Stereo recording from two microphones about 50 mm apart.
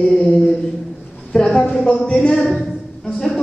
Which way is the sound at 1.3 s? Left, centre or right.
Centre.